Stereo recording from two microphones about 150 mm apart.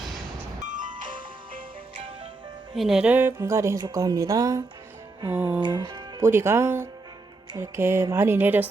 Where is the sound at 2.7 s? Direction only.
Centre (ahead or behind); by 4.6 s 25° right (ahead or behind).